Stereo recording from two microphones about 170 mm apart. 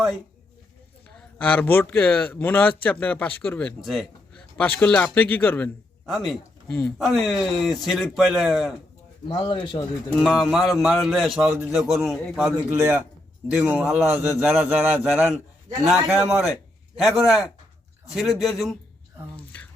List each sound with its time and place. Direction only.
1.1 s a man's voice: 10° left (ahead or behind)
7.0 s a man's voice: centre (ahead or behind)
9.2 s a man's voice: 30° left (ahead or behind)
10.2 s a man's voice: centre (ahead or behind)
12.7 s a man's voice: 15° right (ahead or behind)
19.5 s a sound: 10° left (ahead or behind)